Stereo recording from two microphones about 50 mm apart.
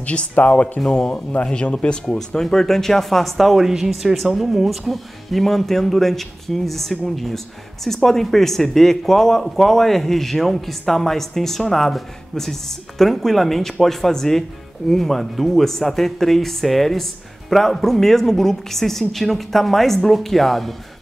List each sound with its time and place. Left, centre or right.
0.0 s speech: left
2.1 s speech: centre